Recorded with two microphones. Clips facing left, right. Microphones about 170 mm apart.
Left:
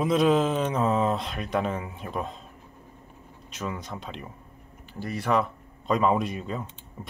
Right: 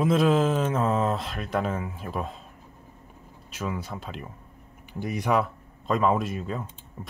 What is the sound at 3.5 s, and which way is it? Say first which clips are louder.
Speech: right 2 dB; 5° right (ahead or behind).